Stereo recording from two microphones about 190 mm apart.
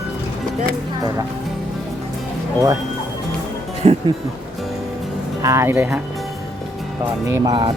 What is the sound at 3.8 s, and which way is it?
Speech, 30° right (ahead or behind).